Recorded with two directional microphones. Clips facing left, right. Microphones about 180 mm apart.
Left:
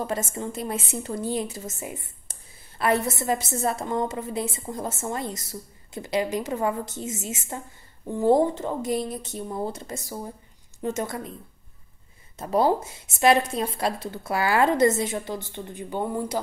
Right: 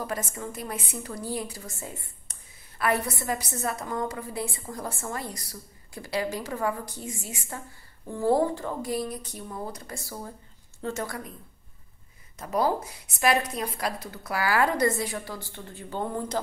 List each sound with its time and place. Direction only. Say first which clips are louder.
0.0 s a woman's voice: left 4 dB; 25° left (ahead or behind)
12.4 s a woman's voice: left 4 dB; 25° left (ahead or behind); by 16.3 s 10° left (ahead or behind)